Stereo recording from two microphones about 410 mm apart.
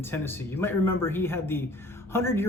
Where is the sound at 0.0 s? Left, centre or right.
Centre.